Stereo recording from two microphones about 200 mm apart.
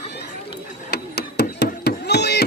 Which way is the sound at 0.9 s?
55° left (ahead or behind).